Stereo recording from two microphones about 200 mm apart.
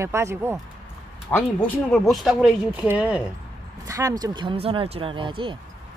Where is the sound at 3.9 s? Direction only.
15° right (ahead or behind).